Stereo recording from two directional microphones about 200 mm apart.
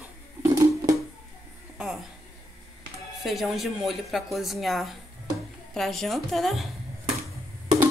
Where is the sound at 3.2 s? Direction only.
Centre (ahead or behind).